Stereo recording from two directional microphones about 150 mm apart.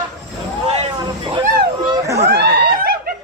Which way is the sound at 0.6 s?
45° right (ahead or behind).